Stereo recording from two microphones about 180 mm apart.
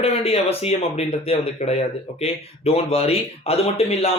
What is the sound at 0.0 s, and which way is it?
Speech, 35° left (ahead or behind).